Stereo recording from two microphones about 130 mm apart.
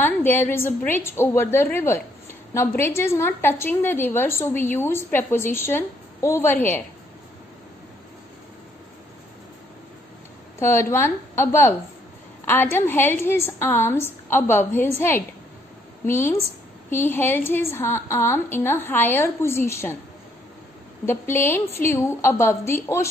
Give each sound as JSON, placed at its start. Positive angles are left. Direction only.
{"t": 0.0, "sound": "a woman's voice", "side_deg": 15}
{"t": 10.6, "sound": "a woman's voice", "side_deg": 20}
{"t": 21.0, "sound": "a woman's voice", "side_deg": 20}